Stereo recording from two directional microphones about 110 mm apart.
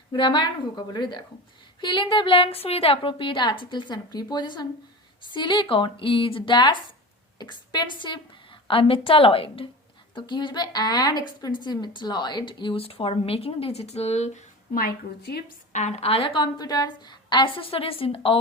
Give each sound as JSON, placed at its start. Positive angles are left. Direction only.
{"t": 0.1, "sound": "a woman's voice", "side_deg": 45}
{"t": 15.7, "sound": "a woman's voice", "side_deg": 85}